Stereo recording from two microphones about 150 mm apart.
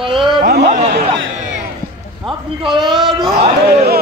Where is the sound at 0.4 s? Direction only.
90° right.